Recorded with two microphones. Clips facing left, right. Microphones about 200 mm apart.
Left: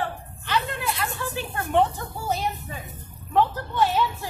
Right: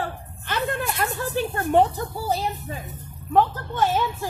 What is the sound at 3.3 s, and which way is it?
Speech, 50° right (ahead or behind).